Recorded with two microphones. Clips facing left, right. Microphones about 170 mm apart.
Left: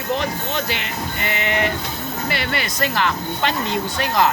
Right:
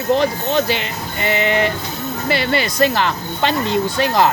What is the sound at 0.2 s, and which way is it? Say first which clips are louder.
Speech: right 7 dB; 35° right (ahead or behind).